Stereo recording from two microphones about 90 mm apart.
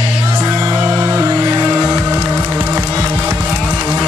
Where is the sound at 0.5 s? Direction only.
35° right (ahead or behind).